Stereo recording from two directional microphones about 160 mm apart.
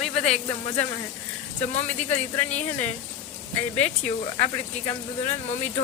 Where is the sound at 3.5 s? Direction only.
10° left (ahead or behind).